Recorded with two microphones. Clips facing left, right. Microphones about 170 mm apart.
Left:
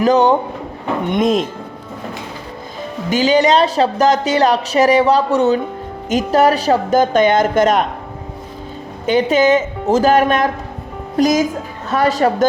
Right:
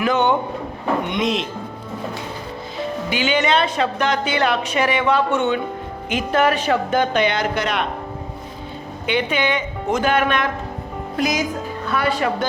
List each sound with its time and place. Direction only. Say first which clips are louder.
0.0 s speech: left 6 dB; 35° left (ahead or behind)
1.0 s speech: left 6 dB; 45° left (ahead or behind)
3.1 s speech: left 7 dB; 35° left (ahead or behind)
9.0 s speech: left 8 dB; 40° left (ahead or behind)